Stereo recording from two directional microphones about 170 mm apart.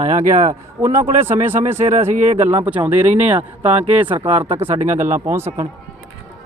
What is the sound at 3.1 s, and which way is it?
Speech, 45° right (ahead or behind).